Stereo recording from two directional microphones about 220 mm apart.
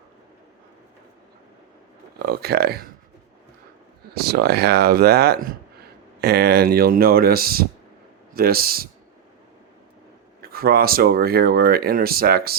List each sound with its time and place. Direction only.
2.1 s speech: 45° right (ahead or behind)
4.1 s speech: 45° right (ahead or behind)
10.4 s speech: 45° right (ahead or behind)